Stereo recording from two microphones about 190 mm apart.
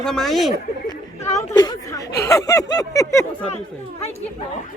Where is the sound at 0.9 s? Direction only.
15° left (ahead or behind).